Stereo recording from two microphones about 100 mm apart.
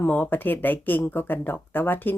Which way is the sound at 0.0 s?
20° left (ahead or behind).